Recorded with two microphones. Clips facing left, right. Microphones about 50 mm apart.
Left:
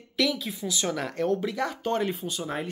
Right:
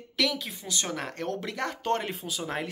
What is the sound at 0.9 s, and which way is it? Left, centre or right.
Speech, right.